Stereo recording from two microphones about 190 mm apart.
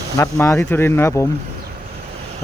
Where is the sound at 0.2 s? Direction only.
15° left (ahead or behind).